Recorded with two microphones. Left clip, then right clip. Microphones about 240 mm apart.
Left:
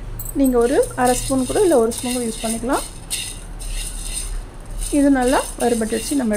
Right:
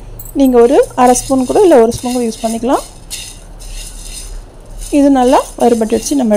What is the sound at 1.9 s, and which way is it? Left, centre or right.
Rattle, centre.